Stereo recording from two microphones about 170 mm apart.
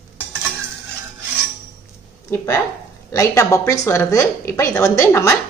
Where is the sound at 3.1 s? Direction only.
15° left (ahead or behind).